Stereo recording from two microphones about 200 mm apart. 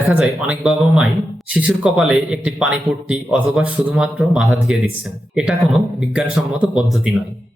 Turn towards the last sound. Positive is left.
turn(degrees=-5)  # may be behind; listen again after turning